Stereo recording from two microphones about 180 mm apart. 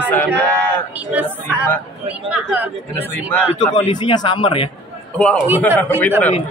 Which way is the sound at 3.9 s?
25° left (ahead or behind).